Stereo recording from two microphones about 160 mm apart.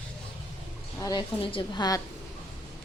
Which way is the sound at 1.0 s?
25° left (ahead or behind).